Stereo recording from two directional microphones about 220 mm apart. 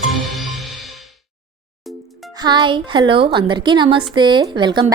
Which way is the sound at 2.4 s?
20° right (ahead or behind).